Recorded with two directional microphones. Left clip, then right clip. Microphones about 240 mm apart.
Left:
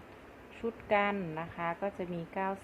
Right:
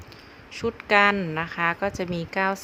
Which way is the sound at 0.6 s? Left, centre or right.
Right.